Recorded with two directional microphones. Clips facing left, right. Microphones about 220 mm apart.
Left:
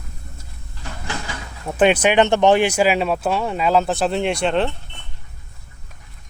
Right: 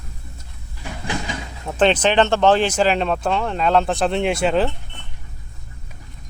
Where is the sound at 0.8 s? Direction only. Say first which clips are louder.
Right 3 dB; 15° right (ahead or behind).